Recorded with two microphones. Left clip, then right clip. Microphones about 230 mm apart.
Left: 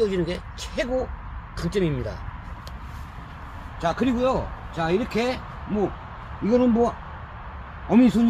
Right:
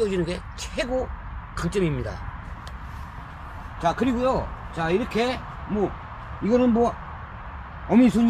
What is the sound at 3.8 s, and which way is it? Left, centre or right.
Speech, left.